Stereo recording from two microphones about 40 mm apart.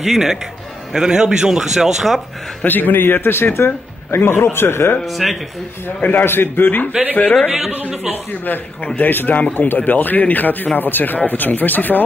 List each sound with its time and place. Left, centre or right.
0.0 s a man's voice: centre
2.6 s a man's voice: left
5.0 s speech: centre
6.2 s a man's voice: left
7.4 s a man's voice: centre
8.1 s speech: left